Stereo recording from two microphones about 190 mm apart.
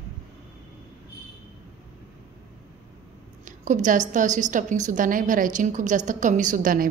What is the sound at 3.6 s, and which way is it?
A woman's voice, 40° right (ahead or behind).